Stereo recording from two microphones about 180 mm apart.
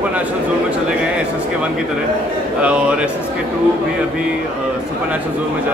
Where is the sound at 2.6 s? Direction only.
5° right (ahead or behind).